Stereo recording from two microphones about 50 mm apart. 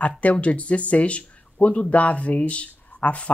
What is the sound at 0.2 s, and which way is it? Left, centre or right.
Speech, left.